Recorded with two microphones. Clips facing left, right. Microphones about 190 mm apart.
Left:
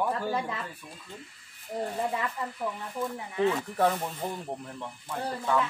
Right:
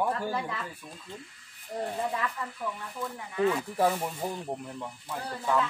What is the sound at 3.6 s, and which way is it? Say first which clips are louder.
Speech: even; 10° right (ahead or behind).